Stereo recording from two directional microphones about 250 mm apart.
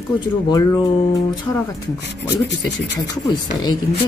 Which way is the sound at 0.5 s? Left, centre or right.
Centre.